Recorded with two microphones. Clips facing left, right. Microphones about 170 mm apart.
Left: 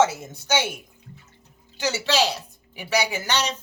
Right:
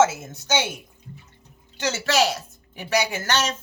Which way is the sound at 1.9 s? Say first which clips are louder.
Right 1 dB; 15° left (ahead or behind).